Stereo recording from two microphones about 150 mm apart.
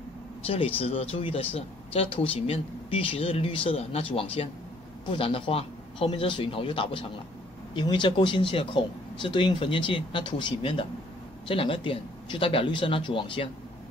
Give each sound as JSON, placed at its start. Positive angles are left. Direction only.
{"t": 0.5, "sound": "speech", "side_deg": 40}